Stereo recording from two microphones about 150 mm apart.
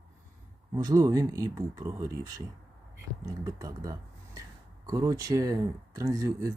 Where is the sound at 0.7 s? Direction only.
25° right (ahead or behind).